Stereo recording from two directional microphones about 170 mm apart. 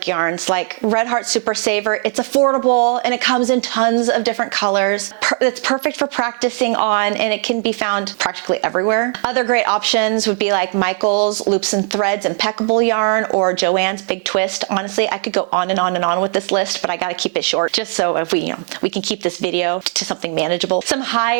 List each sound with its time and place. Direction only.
0.1 s speech: 15° right (ahead or behind)
3.0 s speech: 10° right (ahead or behind)
11.0 s speech: 30° right (ahead or behind)
11.9 s speech: 15° right (ahead or behind)
19.5 s speech: 10° right (ahead or behind)